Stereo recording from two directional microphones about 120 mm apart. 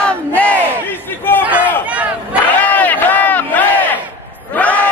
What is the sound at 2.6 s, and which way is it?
Crowd, 15° left (ahead or behind).